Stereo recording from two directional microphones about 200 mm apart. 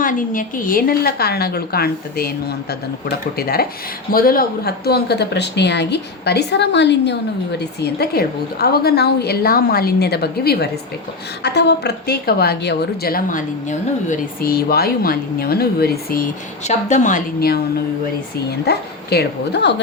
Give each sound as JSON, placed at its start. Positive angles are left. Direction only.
{"t": 0.0, "sound": "a woman's voice", "side_deg": 40}
{"t": 16.6, "sound": "a woman's voice", "side_deg": 35}
{"t": 18.6, "sound": "speech", "side_deg": 55}